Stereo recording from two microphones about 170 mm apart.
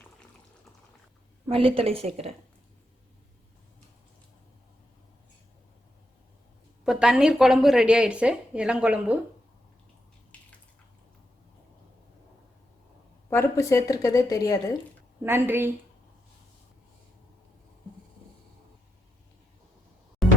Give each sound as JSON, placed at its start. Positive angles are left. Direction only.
{"t": 1.5, "sound": "a woman's voice", "side_deg": -35}
{"t": 6.8, "sound": "speech", "side_deg": -5}
{"t": 10.3, "sound": "a sound", "side_deg": 5}
{"t": 13.3, "sound": "a woman's voice", "side_deg": 15}
{"t": 15.2, "sound": "a woman's voice", "side_deg": -15}
{"t": 20.2, "sound": "music", "side_deg": 0}